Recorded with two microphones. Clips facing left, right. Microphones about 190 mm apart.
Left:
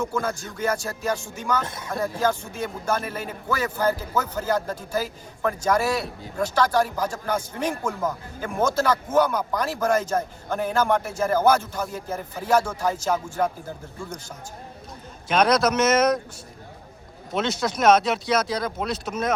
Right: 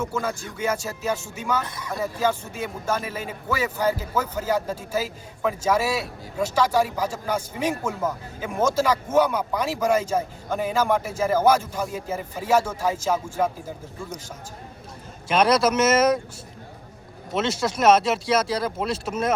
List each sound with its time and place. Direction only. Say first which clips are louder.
0.0 s a man's voice: left 1 dB; 5° right (ahead or behind)
15.3 s speech: right 1 dB; 5° right (ahead or behind)
17.3 s speech: right 1 dB; 5° right (ahead or behind)